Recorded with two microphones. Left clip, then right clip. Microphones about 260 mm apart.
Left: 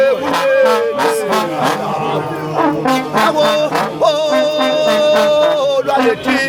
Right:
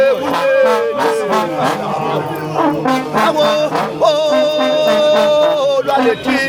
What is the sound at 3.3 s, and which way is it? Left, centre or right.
Music, centre.